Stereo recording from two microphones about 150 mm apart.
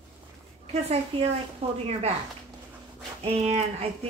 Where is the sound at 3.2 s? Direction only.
45° right (ahead or behind).